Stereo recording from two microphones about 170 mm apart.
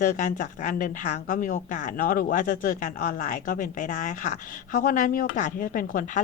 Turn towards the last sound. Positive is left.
turn(degrees=55)  # may be behind; listen again after turning